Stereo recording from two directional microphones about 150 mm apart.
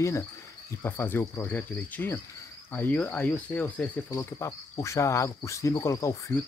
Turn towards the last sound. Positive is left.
turn(degrees=20)  # may be behind; listen again after turning